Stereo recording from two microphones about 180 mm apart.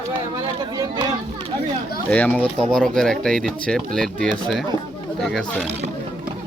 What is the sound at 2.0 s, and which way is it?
Speech, 5° left (ahead or behind).